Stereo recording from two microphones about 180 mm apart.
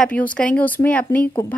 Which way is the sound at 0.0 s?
5° left (ahead or behind).